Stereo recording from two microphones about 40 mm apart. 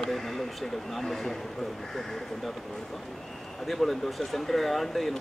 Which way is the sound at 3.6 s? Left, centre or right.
Centre.